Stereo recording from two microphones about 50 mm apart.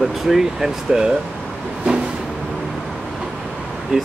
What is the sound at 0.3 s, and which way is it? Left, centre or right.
Speech, centre.